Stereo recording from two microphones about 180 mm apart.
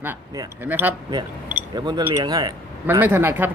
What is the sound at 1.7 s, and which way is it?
Speech, 20° right (ahead or behind).